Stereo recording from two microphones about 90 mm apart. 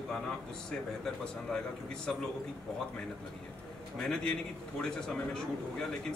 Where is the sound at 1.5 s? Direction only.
10° left (ahead or behind).